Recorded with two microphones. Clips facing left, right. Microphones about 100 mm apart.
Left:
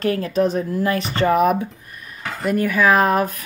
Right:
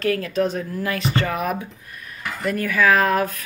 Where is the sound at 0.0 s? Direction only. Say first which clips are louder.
Left 2 dB; 25° left (ahead or behind).